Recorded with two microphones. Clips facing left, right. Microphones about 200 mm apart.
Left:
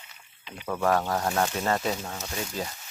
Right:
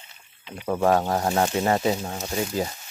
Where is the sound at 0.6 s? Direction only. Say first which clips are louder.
Right 4 dB; 20° right (ahead or behind).